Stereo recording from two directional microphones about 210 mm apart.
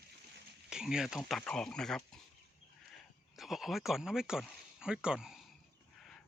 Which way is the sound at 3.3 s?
Centre (ahead or behind).